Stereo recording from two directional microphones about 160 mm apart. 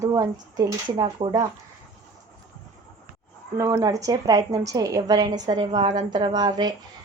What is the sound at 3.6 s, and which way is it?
A woman's voice, 20° right (ahead or behind).